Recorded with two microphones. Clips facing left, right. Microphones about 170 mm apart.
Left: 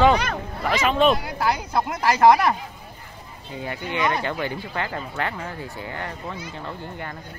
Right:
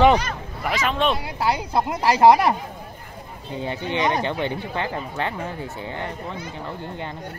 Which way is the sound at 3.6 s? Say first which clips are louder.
Right 1 dB; 20° right (ahead or behind).